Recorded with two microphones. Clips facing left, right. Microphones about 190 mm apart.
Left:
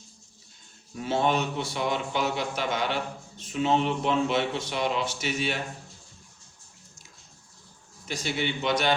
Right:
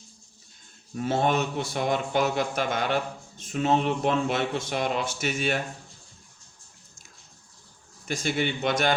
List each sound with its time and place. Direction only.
0.9 s speech: 50° right (ahead or behind)
8.0 s speech: 50° right (ahead or behind)